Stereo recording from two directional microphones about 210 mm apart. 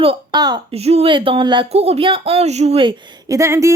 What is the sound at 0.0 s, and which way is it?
A woman's voice, 25° right (ahead or behind).